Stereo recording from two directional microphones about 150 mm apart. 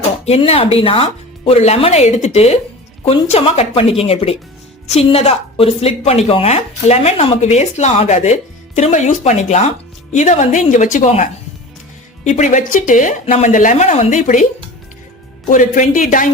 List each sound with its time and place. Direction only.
0.3 s a woman's voice: 40° left (ahead or behind)
15.4 s speech: 60° left (ahead or behind)